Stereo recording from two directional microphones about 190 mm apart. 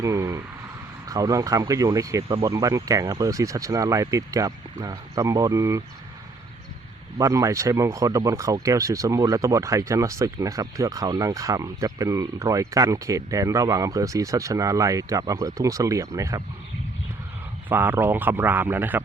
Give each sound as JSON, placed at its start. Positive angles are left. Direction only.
{"t": 0.0, "sound": "a sound", "side_deg": -15}
{"t": 1.0, "sound": "speech", "side_deg": -20}
{"t": 7.2, "sound": "speech", "side_deg": -15}
{"t": 17.7, "sound": "speech", "side_deg": -10}